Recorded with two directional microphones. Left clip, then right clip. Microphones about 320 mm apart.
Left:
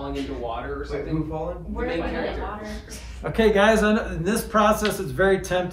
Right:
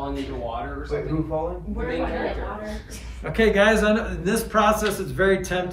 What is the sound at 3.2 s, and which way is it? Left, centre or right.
A man's voice, centre.